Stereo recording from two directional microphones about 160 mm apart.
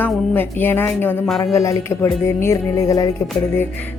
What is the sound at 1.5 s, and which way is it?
Speech, 20° left (ahead or behind).